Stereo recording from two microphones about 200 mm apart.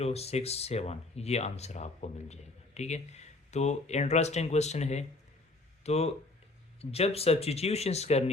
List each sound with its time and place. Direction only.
0.0 s speech: 30° left (ahead or behind)